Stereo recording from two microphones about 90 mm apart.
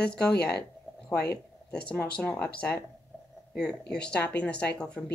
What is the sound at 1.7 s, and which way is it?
Speech, 15° left (ahead or behind).